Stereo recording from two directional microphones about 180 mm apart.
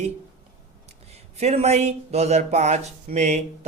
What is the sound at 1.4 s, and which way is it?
Speech, 35° right (ahead or behind).